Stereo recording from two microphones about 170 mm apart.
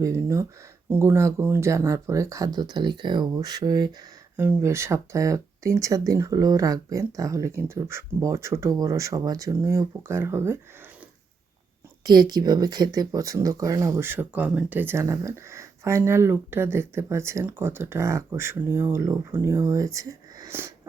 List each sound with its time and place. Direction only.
0.0 s speech: 15° right (ahead or behind)
4.4 s speech: 15° right (ahead or behind)
12.0 s speech: 25° right (ahead or behind)